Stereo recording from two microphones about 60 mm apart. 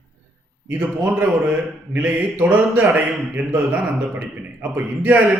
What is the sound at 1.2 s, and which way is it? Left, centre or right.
A man's voice, right.